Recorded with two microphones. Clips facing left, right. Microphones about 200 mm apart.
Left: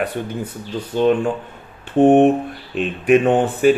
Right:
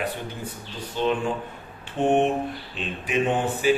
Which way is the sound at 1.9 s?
55° left (ahead or behind).